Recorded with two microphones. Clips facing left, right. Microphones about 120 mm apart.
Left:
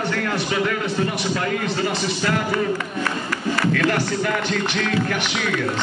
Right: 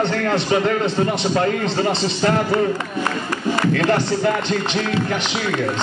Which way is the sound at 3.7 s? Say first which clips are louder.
Right 3 dB; 25° right (ahead or behind).